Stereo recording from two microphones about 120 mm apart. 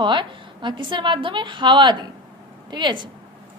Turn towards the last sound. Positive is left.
turn(degrees=-40)  # may be behind; listen again after turning